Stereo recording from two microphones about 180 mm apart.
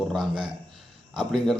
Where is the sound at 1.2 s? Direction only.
5° right (ahead or behind).